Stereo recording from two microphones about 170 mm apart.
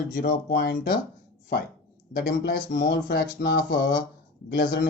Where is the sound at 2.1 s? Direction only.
65° left (ahead or behind); by 3.9 s 90° left.